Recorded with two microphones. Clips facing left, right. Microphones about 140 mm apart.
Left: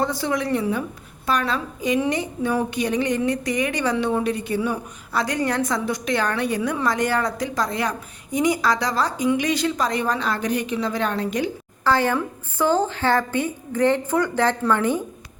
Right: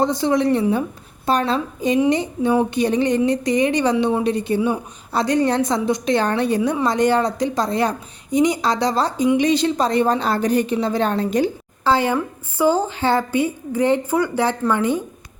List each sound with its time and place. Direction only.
0.0 s a woman's voice: 20° right (ahead or behind)
11.9 s a woman's voice: 15° right (ahead or behind)